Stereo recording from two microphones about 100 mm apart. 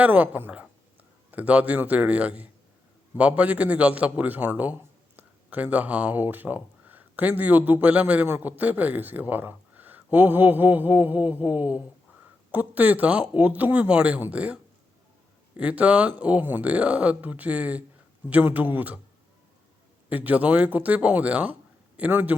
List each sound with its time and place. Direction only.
0.0 s a man's voice: 15° right (ahead or behind)
20.1 s a man's voice: 15° right (ahead or behind)